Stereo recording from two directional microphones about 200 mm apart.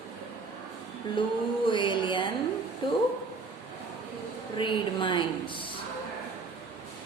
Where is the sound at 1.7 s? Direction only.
25° left (ahead or behind).